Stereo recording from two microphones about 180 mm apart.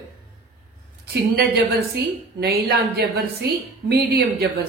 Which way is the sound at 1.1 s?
60° right (ahead or behind).